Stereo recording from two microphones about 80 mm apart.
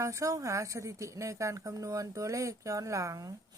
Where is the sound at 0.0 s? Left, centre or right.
Right.